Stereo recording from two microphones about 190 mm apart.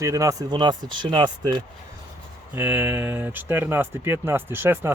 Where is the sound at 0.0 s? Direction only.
15° right (ahead or behind).